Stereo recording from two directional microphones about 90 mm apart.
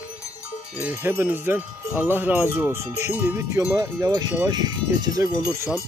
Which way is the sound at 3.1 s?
20° right (ahead or behind).